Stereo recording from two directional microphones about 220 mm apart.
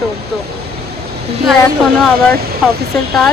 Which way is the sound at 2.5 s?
45° right (ahead or behind).